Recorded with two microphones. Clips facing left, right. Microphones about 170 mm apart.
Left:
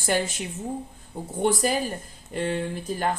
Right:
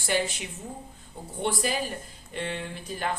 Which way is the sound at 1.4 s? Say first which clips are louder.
Left 5 dB; 45° left (ahead or behind).